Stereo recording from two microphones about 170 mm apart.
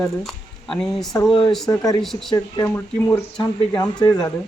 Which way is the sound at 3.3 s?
25° left (ahead or behind).